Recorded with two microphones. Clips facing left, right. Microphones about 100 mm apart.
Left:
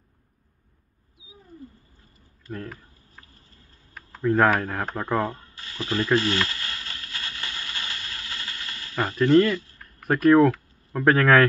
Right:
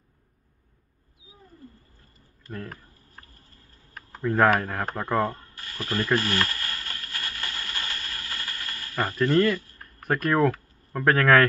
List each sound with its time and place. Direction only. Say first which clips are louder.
4.2 s speech: left 1 dB; 10° left (ahead or behind)
6.4 s a sound: even; 20° left (ahead or behind)
10.0 s speech: left 6 dB; centre (ahead or behind)